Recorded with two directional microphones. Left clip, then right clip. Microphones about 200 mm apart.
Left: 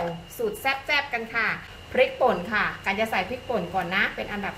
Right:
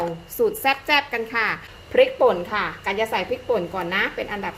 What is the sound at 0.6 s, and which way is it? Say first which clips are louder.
Speech: right 2 dB; 50° right (ahead or behind).